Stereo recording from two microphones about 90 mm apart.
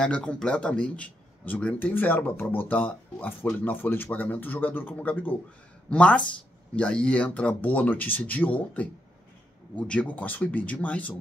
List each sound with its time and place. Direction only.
0.0 s speech: 10° left (ahead or behind)